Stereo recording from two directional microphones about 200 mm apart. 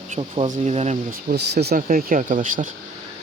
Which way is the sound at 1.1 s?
50° right (ahead or behind).